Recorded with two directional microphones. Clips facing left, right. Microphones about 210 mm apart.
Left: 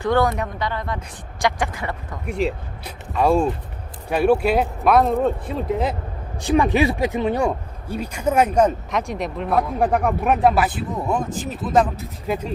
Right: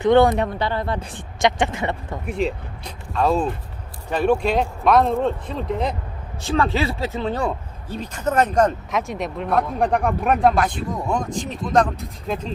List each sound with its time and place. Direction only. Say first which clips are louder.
0.0 s speech: right 5 dB; 20° right (ahead or behind)
2.2 s speech: left 1 dB; centre (ahead or behind)
6.4 s speech: left 4 dB; 15° left (ahead or behind)